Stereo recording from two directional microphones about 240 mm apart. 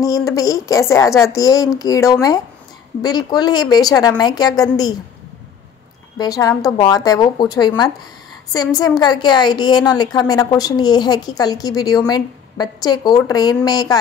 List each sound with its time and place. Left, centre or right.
0.0 s a woman's voice: centre
6.1 s a woman's voice: centre